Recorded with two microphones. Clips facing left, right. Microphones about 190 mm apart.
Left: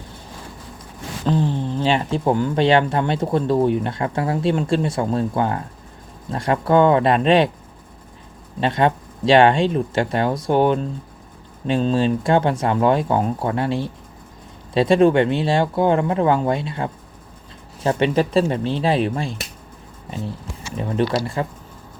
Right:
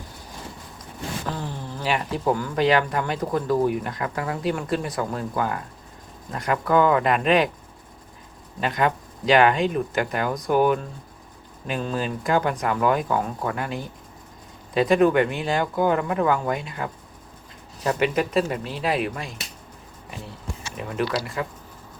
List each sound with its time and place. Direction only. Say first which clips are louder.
1.3 s speech: left 11 dB; 20° left (ahead or behind)
8.6 s speech: left 5 dB; 30° left (ahead or behind)
20.7 s speech: left 5 dB; 30° left (ahead or behind)